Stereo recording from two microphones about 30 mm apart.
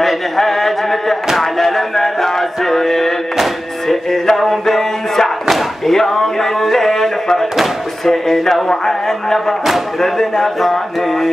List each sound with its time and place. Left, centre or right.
0.0 s a sound: centre
3.9 s music: centre
5.9 s a man's voice: centre
9.7 s a man's voice: centre
10.6 s mantra: centre